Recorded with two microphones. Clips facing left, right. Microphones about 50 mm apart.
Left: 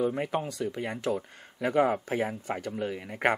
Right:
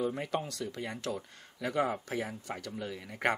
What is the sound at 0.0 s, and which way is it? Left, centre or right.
Speech, centre.